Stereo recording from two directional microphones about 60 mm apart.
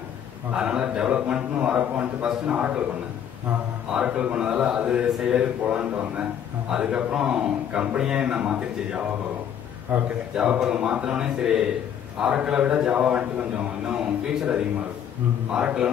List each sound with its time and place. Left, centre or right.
0.6 s a man's voice: centre
3.9 s a man's voice: centre
9.9 s a man's voice: right
10.3 s a man's voice: centre